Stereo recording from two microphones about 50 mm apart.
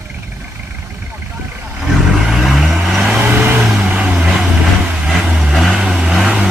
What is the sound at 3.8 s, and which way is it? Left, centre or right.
Vehicle, right.